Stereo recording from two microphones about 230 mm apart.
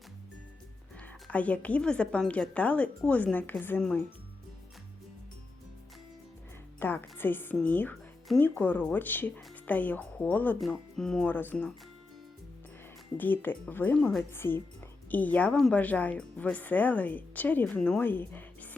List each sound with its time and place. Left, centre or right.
0.9 s a woman's voice: centre
6.7 s speech: centre
13.1 s speech: centre